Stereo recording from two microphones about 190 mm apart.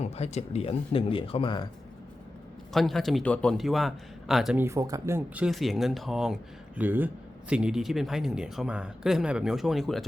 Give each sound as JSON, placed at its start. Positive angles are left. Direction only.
{"t": 0.0, "sound": "speech", "side_deg": 35}
{"t": 2.7, "sound": "speech", "side_deg": 0}
{"t": 4.6, "sound": "speech", "side_deg": -15}